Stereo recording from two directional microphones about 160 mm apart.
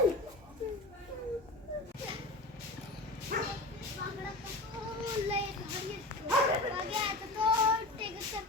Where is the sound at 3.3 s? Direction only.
65° right (ahead or behind).